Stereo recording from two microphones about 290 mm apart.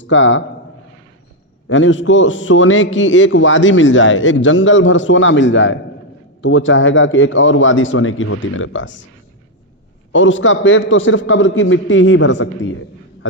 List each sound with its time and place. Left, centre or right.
0.0 s a man's voice: left
1.6 s a man's voice: left
10.1 s a man's voice: left